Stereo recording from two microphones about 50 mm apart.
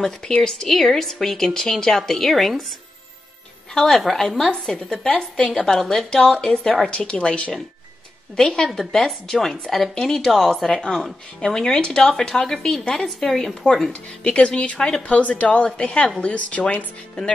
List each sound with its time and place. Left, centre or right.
0.3 s speech: centre
3.7 s speech: centre; by 7.5 s left
8.4 s a woman's voice: centre
14.2 s speech: left